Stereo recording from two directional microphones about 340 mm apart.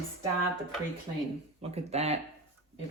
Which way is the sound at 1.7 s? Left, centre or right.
Centre.